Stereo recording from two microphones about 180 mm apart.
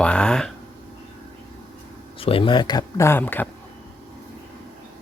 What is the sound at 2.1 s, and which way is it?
Speech, 30° left (ahead or behind).